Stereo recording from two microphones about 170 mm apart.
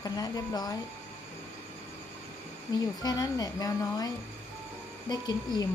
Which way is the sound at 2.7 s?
25° left (ahead or behind).